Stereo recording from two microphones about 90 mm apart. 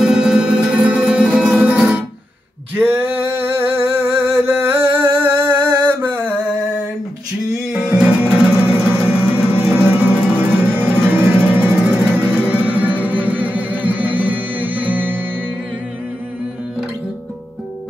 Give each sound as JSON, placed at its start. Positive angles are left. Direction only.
{"t": 0.0, "sound": "music", "side_deg": -10}
{"t": 2.7, "sound": "a sound", "side_deg": -25}
{"t": 7.7, "sound": "music", "side_deg": -15}